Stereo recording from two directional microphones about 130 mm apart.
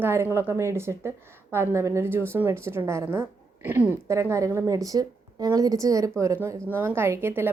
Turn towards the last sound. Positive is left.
turn(degrees=-15)  # may be behind; listen again after turning